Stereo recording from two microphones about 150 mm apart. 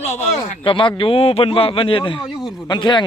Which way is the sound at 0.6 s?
35° left (ahead or behind).